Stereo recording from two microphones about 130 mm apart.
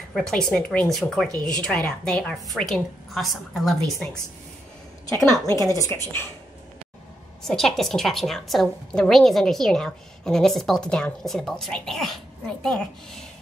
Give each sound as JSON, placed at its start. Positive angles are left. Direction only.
{"t": 0.1, "sound": "a woman's voice", "side_deg": 5}
{"t": 5.5, "sound": "a woman's voice", "side_deg": 25}
{"t": 7.4, "sound": "a woman's voice", "side_deg": 0}